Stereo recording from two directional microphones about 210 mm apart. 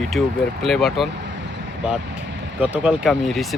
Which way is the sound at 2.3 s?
55° right (ahead or behind).